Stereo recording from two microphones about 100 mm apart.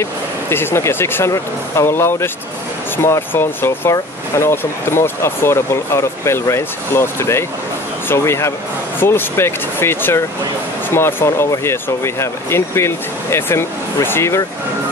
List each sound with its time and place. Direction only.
0.0 s speech: 25° left (ahead or behind)